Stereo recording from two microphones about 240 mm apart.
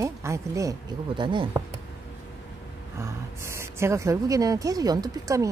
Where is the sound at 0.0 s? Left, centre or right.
Centre.